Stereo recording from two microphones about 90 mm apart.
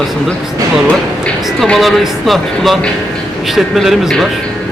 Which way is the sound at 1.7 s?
Centre (ahead or behind).